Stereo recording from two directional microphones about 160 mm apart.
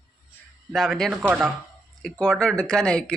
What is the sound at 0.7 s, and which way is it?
Speech, centre (ahead or behind).